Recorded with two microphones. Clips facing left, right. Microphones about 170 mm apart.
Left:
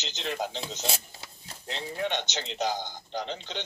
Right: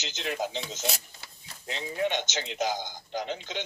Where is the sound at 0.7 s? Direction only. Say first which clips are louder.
Even; 25° left (ahead or behind).